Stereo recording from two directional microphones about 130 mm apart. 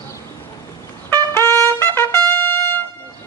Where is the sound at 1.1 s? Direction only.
20° left (ahead or behind).